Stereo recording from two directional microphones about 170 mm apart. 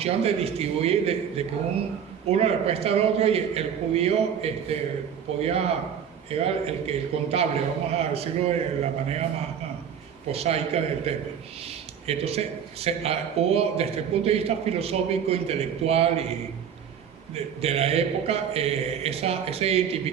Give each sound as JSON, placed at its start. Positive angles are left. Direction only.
{"t": 0.0, "sound": "a man's voice", "side_deg": -35}
{"t": 10.3, "sound": "a man's voice", "side_deg": -35}
{"t": 17.3, "sound": "a man's voice", "side_deg": -40}